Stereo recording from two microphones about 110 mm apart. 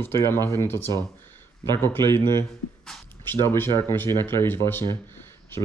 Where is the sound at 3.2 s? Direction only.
20° left (ahead or behind).